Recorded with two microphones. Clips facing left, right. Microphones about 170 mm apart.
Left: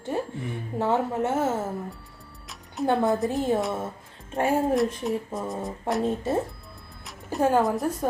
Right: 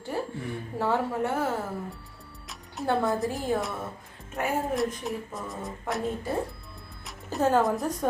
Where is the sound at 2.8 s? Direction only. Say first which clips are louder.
Left 3 dB; 20° left (ahead or behind).